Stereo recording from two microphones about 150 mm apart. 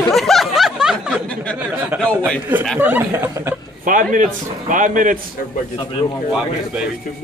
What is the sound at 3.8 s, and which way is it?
A man's voice, 60° right (ahead or behind).